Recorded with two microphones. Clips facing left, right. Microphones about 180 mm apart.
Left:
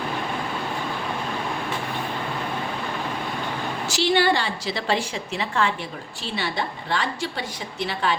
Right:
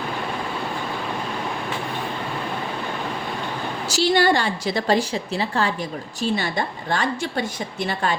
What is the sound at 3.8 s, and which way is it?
A woman's voice, 40° right (ahead or behind).